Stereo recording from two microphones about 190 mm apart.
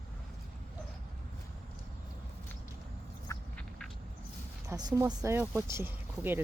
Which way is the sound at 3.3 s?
5° left (ahead or behind).